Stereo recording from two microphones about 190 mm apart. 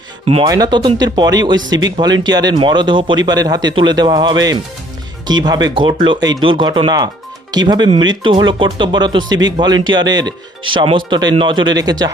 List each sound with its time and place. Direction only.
0.4 s speech: 20° right (ahead or behind)